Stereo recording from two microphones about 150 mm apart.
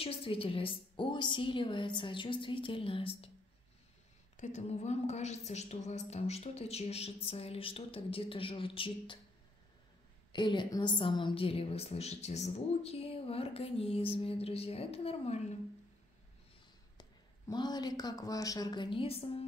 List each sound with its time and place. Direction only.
0.0 s a woman's voice: 40° left (ahead or behind)
4.4 s a woman's voice: 50° left (ahead or behind); by 9.2 s 35° left (ahead or behind)
10.3 s a woman's voice: 30° left (ahead or behind)
17.5 s a woman's voice: 25° left (ahead or behind)